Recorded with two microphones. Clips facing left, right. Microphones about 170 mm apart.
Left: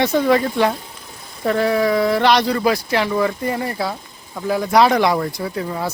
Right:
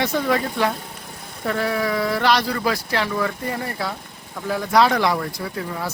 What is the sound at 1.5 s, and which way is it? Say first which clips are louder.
Speech: left 6 dB; 25° left (ahead or behind).